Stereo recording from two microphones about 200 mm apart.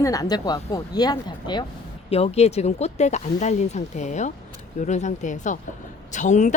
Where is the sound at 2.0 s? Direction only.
30° left (ahead or behind).